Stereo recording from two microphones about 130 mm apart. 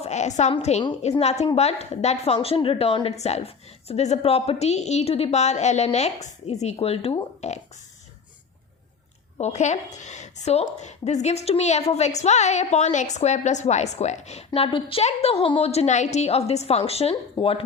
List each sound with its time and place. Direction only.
0.0 s a sound: 60° left (ahead or behind)
0.6 s a woman's voice: 55° left (ahead or behind)
9.4 s a woman's voice: 60° left (ahead or behind)
17.4 s speech: 35° left (ahead or behind)